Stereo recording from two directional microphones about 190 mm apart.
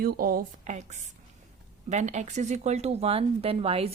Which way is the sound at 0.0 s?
50° right (ahead or behind).